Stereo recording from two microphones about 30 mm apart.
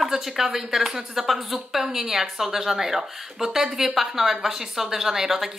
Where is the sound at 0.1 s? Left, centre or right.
Centre.